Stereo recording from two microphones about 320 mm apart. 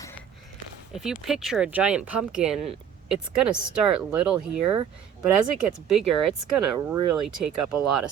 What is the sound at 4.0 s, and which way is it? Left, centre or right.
Speech, centre.